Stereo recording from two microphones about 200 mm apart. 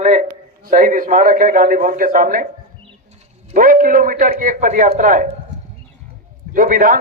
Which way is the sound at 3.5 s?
45° right (ahead or behind).